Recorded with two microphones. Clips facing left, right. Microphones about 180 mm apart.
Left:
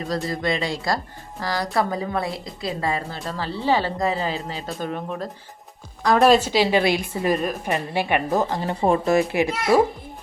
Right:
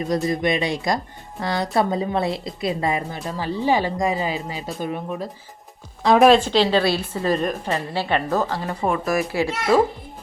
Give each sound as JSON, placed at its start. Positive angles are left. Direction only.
{"t": 0.3, "sound": "a woman's voice", "side_deg": -20}
{"t": 6.0, "sound": "speech", "side_deg": -25}
{"t": 6.2, "sound": "a woman's voice", "side_deg": 5}